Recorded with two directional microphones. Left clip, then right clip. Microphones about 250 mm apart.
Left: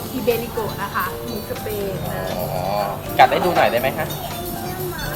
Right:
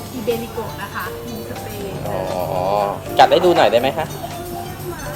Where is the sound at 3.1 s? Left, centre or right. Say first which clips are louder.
Right 2 dB; right.